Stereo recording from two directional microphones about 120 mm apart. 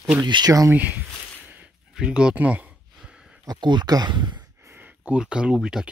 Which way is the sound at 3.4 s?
35° right (ahead or behind).